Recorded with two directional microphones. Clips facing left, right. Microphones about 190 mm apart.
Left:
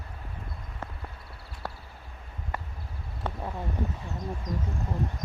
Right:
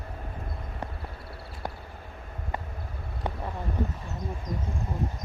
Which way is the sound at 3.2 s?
15° right (ahead or behind).